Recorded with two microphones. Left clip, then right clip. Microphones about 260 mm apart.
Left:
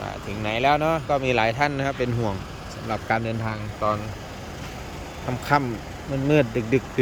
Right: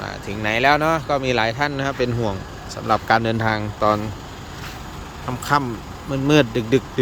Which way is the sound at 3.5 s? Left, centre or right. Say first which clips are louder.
Right 5 dB; right.